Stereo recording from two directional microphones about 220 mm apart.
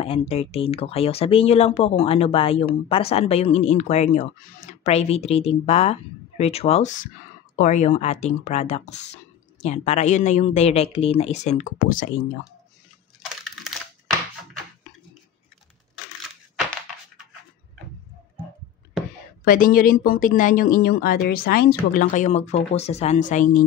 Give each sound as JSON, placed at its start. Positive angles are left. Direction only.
{"t": 0.0, "sound": "speech", "side_deg": 25}
{"t": 19.4, "sound": "speech", "side_deg": 40}